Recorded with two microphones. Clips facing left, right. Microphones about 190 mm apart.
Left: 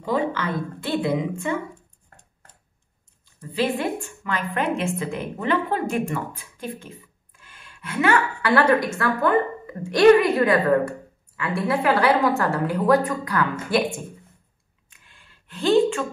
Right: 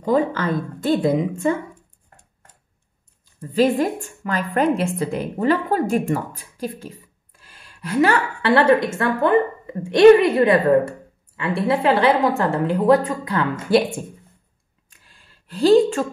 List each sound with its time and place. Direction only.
0.0 s a woman's voice: 45° right (ahead or behind)
3.3 s a woman's voice: 40° right (ahead or behind)
14.9 s a sound: 35° right (ahead or behind)